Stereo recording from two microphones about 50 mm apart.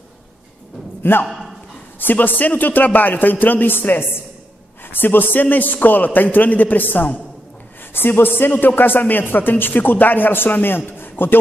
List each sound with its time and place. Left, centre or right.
1.2 s a man's voice: centre
2.0 s a man's voice: left
8.2 s a man's voice: left